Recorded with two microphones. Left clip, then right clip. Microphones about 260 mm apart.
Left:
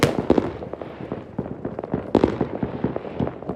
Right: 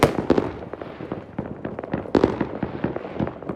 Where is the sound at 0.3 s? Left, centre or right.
Left.